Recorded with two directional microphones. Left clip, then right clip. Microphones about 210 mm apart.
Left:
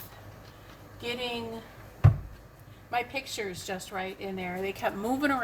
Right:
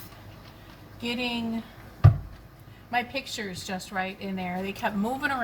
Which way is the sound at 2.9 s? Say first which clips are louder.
Right 2 dB; 25° left (ahead or behind).